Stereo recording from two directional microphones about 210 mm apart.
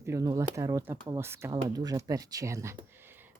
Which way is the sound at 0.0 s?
15° right (ahead or behind).